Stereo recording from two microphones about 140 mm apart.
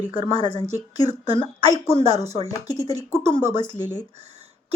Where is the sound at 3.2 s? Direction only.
55° right (ahead or behind).